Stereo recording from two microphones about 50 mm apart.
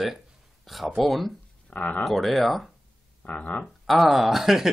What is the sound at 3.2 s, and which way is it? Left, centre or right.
Speech, left.